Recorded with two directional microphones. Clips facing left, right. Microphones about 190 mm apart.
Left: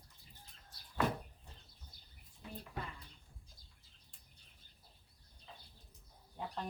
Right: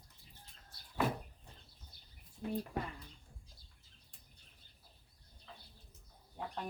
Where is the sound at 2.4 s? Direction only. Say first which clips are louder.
Right 11 dB; 55° right (ahead or behind).